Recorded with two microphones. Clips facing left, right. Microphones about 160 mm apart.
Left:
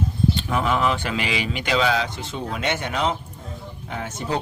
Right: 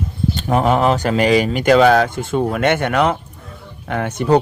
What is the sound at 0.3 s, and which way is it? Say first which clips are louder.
Speech: right 7 dB; 45° right (ahead or behind).